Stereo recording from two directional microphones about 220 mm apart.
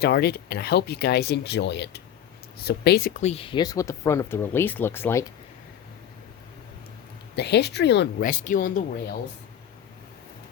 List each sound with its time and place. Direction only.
0.0 s speech: 45° left (ahead or behind)
3.2 s speech: 30° left (ahead or behind); by 5.2 s 10° left (ahead or behind)
7.3 s speech: 50° left (ahead or behind)
8.3 s speech: 35° left (ahead or behind)